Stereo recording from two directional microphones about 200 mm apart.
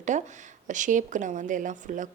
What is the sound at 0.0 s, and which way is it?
Speech, 35° right (ahead or behind).